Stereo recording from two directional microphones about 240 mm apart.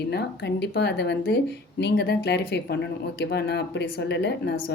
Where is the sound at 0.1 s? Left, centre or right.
Left.